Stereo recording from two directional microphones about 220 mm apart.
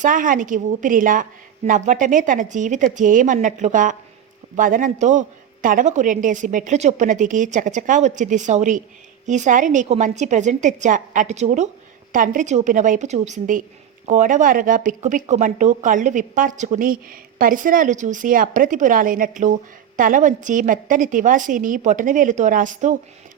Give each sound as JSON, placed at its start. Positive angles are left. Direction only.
{"t": 0.0, "sound": "speech", "side_deg": -35}